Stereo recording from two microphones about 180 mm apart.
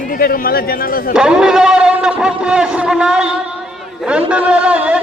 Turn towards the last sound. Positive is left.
turn(degrees=-5)  # may be behind; listen again after turning